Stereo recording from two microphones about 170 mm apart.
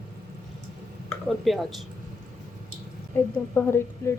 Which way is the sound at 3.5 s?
15° left (ahead or behind).